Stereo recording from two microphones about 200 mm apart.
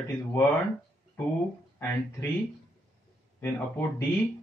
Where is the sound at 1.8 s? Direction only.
15° left (ahead or behind).